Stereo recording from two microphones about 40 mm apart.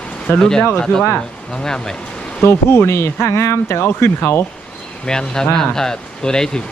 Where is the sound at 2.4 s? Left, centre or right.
Left.